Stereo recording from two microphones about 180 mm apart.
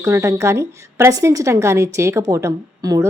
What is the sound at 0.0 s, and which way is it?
A woman's voice, 15° right (ahead or behind).